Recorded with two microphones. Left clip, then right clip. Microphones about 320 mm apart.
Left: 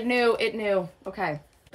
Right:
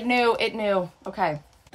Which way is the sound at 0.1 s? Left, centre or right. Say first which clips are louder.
Right 2 dB; centre.